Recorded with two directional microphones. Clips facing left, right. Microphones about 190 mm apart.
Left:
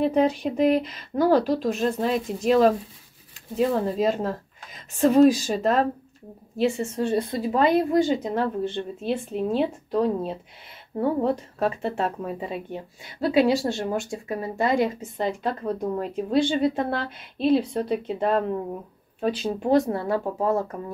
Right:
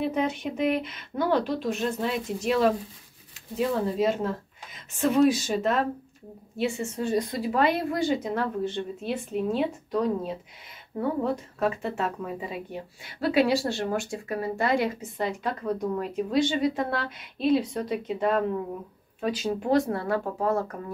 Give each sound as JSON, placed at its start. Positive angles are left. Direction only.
{"t": 0.0, "sound": "a woman's voice", "side_deg": 35}
{"t": 13.0, "sound": "a woman's voice", "side_deg": 20}